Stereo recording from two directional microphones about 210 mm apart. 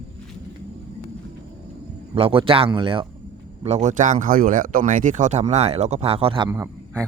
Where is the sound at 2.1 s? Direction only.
25° right (ahead or behind).